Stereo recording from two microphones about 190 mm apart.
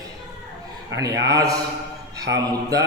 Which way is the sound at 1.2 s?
20° right (ahead or behind).